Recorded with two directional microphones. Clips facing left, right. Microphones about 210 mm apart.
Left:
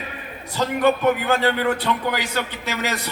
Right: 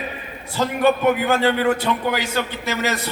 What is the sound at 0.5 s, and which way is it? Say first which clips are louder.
A man's voice: right 1 dB; 15° right (ahead or behind).